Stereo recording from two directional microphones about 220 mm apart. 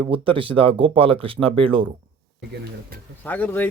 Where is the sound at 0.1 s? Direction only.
25° right (ahead or behind).